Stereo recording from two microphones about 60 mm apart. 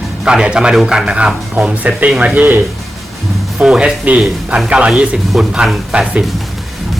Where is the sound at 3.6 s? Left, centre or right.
Centre.